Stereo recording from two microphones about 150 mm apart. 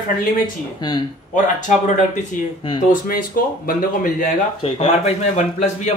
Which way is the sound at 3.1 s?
75° left (ahead or behind).